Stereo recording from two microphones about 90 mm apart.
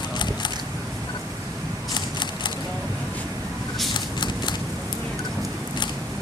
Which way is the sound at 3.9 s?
55° left (ahead or behind).